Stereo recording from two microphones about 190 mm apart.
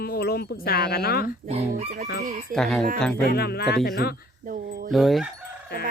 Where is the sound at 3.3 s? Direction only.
55° left (ahead or behind).